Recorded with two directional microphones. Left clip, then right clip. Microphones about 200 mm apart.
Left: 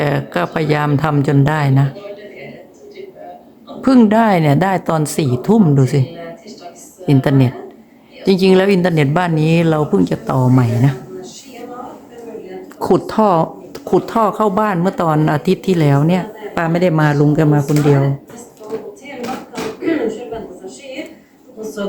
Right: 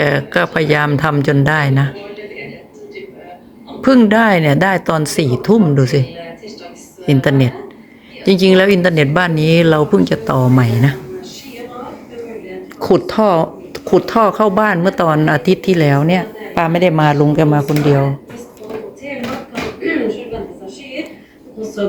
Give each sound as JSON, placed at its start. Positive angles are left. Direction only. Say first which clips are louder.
{"t": 0.0, "sound": "speech", "louder": "right 4 dB", "side_deg": 10}
{"t": 3.8, "sound": "speech", "louder": "right 1 dB", "side_deg": 10}
{"t": 12.8, "sound": "speech", "louder": "right 1 dB", "side_deg": 15}